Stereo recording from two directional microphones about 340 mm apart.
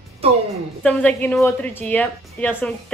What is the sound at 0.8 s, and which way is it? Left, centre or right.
A woman's voice, centre.